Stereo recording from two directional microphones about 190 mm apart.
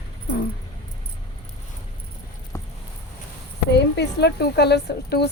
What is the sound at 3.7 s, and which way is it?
A woman's voice, 60° left (ahead or behind).